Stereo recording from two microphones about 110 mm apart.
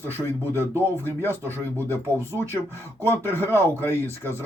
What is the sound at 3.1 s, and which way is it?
Speech, 20° left (ahead or behind).